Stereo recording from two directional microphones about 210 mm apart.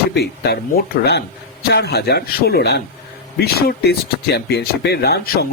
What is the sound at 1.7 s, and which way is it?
Speech, 50° left (ahead or behind).